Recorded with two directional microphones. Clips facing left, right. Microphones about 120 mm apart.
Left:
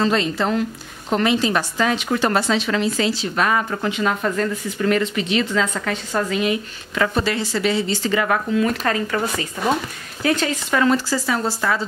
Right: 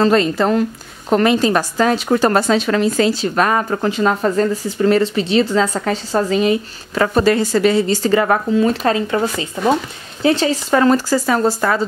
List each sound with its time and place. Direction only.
0.0 s a woman's voice: 45° right (ahead or behind)